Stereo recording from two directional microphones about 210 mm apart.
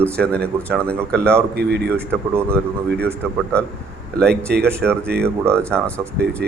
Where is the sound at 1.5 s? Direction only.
50° right (ahead or behind).